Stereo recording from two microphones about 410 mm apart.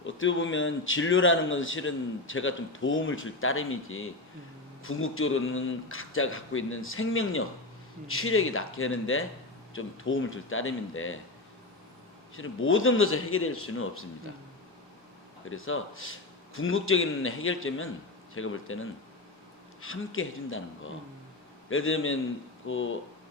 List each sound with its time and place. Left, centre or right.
0.0 s a man's voice: left
12.4 s a man's voice: left
15.4 s a man's voice: left